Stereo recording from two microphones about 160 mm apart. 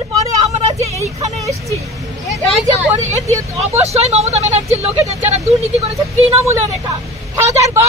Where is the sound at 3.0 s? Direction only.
45° right (ahead or behind).